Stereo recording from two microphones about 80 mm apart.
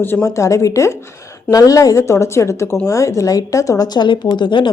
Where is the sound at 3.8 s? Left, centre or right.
Left.